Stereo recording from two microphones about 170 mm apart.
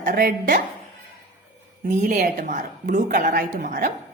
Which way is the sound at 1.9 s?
50° right (ahead or behind).